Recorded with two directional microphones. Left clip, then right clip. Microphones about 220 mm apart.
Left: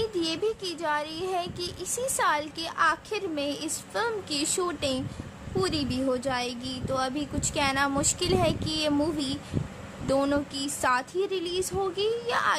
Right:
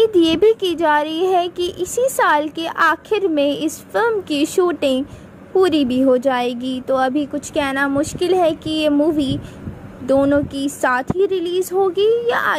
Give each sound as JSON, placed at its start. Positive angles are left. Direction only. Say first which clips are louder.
{"t": 0.0, "sound": "speech", "louder": "right 15 dB", "side_deg": -35}
{"t": 10.0, "sound": "speech", "louder": "right 11 dB", "side_deg": -20}